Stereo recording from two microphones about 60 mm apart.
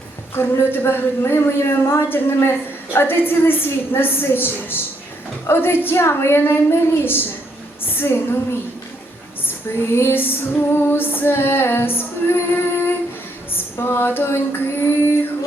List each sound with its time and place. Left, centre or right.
0.3 s female singing: left
2.0 s female singing: left
9.9 s female singing: left